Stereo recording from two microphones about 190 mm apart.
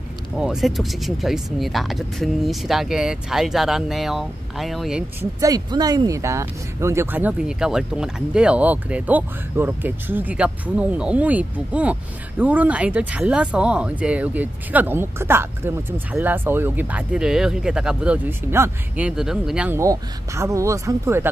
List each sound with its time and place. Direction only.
0.4 s speech: centre (ahead or behind)
5.2 s speech: 20° right (ahead or behind)